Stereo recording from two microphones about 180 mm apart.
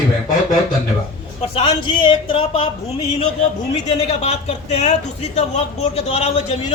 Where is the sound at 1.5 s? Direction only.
30° left (ahead or behind).